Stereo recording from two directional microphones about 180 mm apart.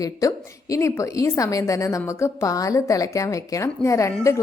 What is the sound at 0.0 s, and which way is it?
A woman's voice, 20° left (ahead or behind).